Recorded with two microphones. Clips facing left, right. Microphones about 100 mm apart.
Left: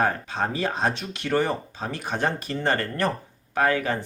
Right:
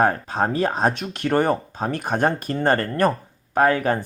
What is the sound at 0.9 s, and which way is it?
Speech, 50° right (ahead or behind).